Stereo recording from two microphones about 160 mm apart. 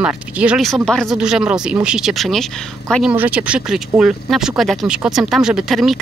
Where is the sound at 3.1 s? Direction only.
10° right (ahead or behind).